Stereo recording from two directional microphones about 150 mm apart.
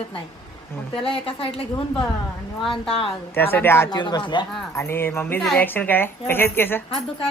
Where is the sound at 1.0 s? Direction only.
35° left (ahead or behind).